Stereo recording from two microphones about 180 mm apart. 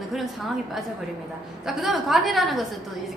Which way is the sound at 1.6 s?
Centre (ahead or behind).